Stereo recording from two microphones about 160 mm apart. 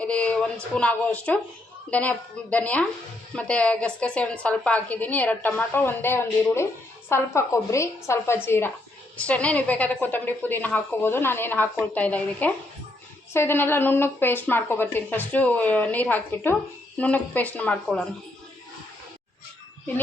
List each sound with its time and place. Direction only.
0.0 s a woman's voice: 10° left (ahead or behind)